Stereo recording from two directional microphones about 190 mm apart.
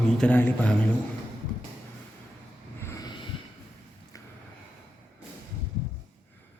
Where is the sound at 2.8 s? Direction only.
15° left (ahead or behind).